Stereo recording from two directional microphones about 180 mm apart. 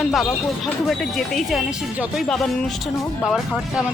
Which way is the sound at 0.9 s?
Centre (ahead or behind).